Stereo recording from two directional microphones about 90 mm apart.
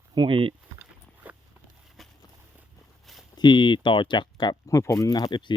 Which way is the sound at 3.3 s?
60° left (ahead or behind).